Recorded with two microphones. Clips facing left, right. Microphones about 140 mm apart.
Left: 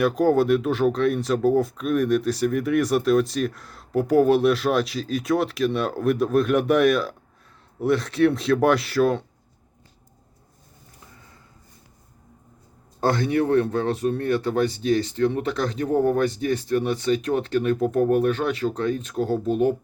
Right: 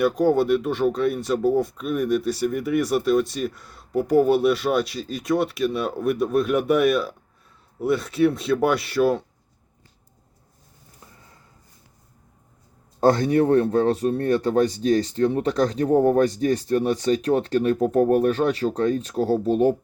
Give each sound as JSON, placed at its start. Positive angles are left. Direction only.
{"t": 0.0, "sound": "speech", "side_deg": 0}
{"t": 13.0, "sound": "speech", "side_deg": -40}